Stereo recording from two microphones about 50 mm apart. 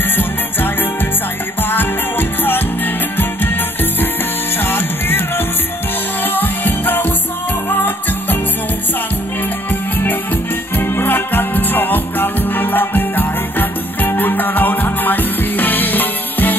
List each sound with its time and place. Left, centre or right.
0.1 s music: left
4.6 s music: left
6.2 s music: left
9.7 s music: left